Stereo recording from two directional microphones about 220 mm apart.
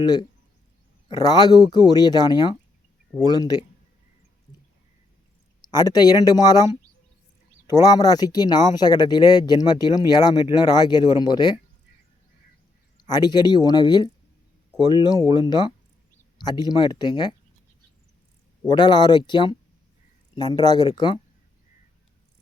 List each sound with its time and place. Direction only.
0.0 s speech: 20° left (ahead or behind)
5.6 s speech: 20° left (ahead or behind)
7.7 s speech: 15° left (ahead or behind)
13.1 s speech: 20° left (ahead or behind)
18.6 s speech: 20° left (ahead or behind)